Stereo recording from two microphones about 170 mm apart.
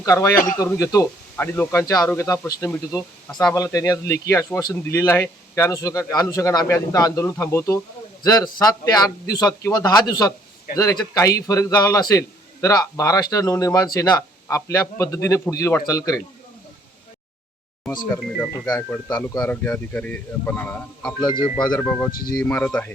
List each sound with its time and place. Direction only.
0.0 s a man's voice: 20° left (ahead or behind)
18.6 s speech: 15° left (ahead or behind)
21.2 s a man's voice: 30° left (ahead or behind)
21.6 s speech: 5° left (ahead or behind)